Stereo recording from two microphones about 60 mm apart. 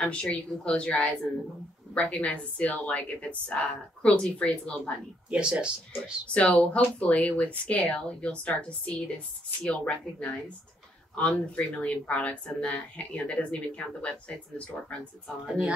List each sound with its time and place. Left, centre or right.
0.0 s a woman's voice: centre
5.3 s speech: centre
6.3 s a woman's voice: centre